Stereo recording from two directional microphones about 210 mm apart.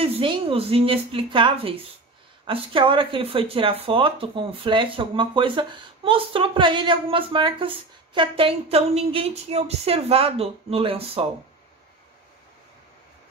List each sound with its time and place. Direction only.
0.0 s speech: 25° right (ahead or behind)